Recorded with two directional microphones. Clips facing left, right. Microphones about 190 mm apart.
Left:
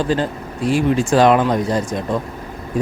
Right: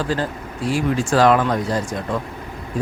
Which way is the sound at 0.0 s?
20° left (ahead or behind).